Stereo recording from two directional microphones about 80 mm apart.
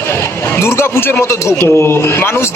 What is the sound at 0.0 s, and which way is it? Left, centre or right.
Speech, left.